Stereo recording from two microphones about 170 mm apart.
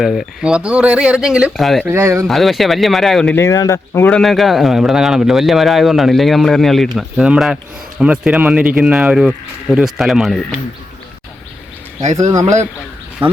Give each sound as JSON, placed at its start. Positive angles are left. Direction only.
{"t": 0.0, "sound": "speech", "side_deg": 0}
{"t": 1.8, "sound": "speech", "side_deg": -15}
{"t": 2.2, "sound": "speech", "side_deg": 0}
{"t": 3.3, "sound": "speech", "side_deg": 20}
{"t": 4.2, "sound": "speech", "side_deg": 0}
{"t": 12.1, "sound": "speech", "side_deg": -20}